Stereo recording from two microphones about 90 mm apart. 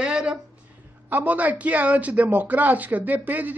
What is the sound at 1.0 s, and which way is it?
A man's voice, 20° right (ahead or behind).